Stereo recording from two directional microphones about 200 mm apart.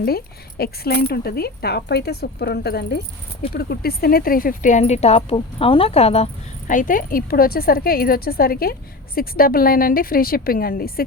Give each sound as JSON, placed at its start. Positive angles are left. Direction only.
{"t": 0.0, "sound": "speech", "side_deg": 50}